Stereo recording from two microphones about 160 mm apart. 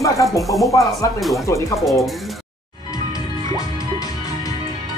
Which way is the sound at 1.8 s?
Centre (ahead or behind).